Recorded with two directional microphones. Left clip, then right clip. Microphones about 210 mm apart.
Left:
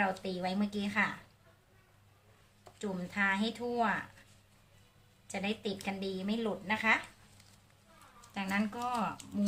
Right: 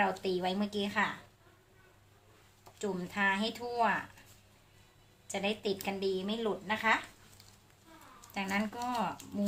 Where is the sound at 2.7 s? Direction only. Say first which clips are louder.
Right 1 dB; 15° right (ahead or behind).